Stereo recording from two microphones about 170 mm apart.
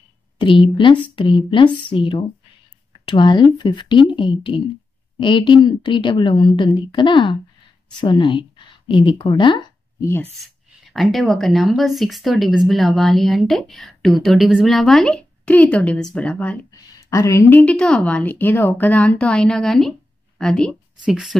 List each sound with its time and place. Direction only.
0.4 s a woman's voice: 30° left (ahead or behind)
10.9 s speech: centre (ahead or behind)
16.7 s a woman's voice: 20° left (ahead or behind); by 21.4 s centre (ahead or behind)